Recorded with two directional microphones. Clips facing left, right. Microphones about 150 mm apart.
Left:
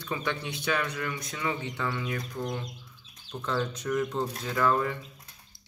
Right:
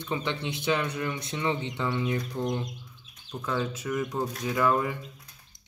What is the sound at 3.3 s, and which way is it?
Speech, 5° right (ahead or behind).